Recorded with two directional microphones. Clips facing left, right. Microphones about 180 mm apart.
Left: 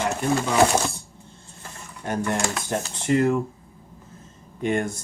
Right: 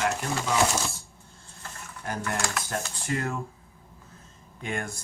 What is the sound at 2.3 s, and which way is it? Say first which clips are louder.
Speech: left 4 dB; 20° left (ahead or behind).